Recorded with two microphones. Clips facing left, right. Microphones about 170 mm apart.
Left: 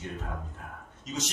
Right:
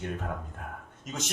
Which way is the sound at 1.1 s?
50° right (ahead or behind).